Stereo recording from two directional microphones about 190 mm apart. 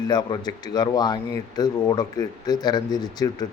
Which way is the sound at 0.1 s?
20° left (ahead or behind).